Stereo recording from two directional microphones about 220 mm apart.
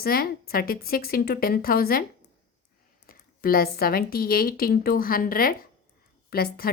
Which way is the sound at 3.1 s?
40° left (ahead or behind).